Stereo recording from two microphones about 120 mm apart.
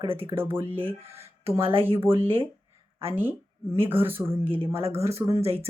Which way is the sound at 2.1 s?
20° right (ahead or behind).